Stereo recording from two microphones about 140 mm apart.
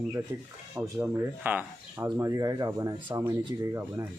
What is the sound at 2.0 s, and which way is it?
Speech, 25° right (ahead or behind).